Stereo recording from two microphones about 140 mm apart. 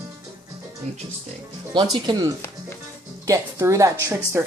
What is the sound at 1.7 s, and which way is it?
Speech, 30° right (ahead or behind).